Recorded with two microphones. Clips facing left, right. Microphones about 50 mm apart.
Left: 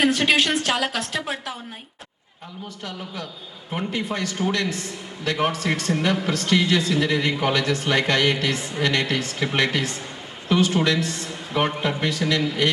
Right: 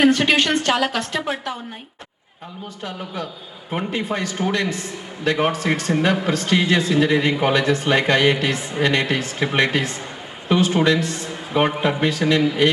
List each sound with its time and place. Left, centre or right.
0.0 s a woman's voice: centre
3.7 s a man's voice: centre
8.5 s a man's voice: centre
11.5 s a man's voice: centre